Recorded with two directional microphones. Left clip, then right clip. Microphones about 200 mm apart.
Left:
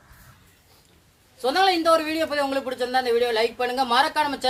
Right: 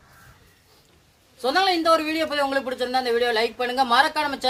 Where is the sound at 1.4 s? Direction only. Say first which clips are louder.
Left 1 dB; 15° right (ahead or behind).